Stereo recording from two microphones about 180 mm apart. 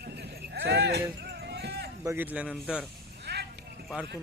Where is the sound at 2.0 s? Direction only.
10° right (ahead or behind).